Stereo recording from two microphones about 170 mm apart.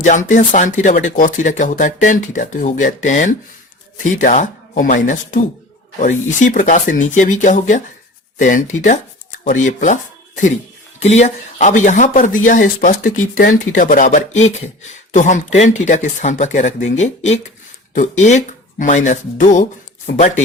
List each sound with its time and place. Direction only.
0.0 s speech: 50° left (ahead or behind)
6.0 s speech: 50° left (ahead or behind)
11.0 s speech: 40° left (ahead or behind)